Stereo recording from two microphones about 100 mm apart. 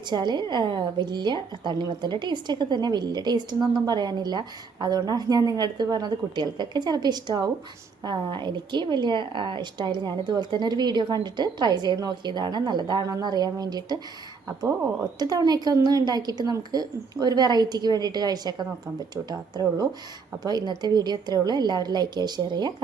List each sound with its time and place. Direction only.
0.1 s a woman's voice: 45° right (ahead or behind)
15.2 s a woman's voice: 40° right (ahead or behind)